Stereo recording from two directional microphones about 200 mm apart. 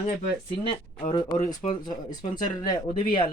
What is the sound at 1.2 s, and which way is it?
Speech, 40° left (ahead or behind).